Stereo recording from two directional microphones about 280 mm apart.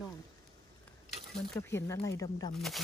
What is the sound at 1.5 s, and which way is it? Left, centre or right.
Speech, centre.